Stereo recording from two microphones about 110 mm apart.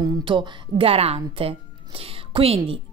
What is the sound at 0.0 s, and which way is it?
A woman's voice, 40° right (ahead or behind).